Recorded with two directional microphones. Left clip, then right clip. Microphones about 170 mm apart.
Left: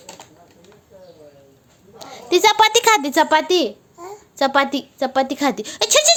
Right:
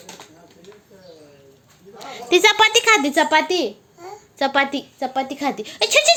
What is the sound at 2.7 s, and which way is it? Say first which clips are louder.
A woman's voice: left 1 dB; 35° left (ahead or behind).